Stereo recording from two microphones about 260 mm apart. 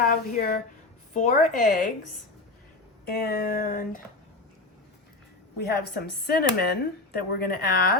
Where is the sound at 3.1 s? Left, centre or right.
Left.